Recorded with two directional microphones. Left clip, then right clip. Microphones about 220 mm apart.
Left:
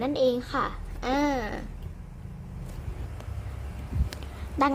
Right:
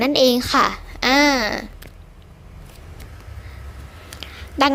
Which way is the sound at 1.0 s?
25° right (ahead or behind).